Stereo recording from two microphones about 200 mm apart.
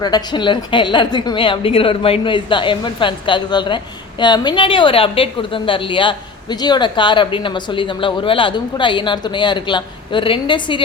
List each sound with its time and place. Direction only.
0.0 s a woman's voice: 20° left (ahead or behind)